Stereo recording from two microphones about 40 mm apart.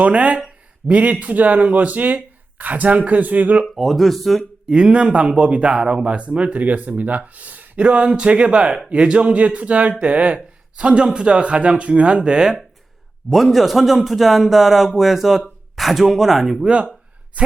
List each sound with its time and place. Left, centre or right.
0.0 s speech: right
3.8 s speech: centre
4.7 s speech: right
7.8 s speech: right
13.3 s speech: centre
16.6 s speech: right